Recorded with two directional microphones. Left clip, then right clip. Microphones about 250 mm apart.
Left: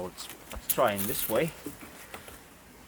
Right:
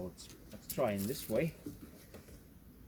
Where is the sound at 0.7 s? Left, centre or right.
Left.